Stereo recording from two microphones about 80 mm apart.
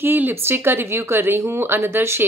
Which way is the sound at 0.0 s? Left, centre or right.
Right.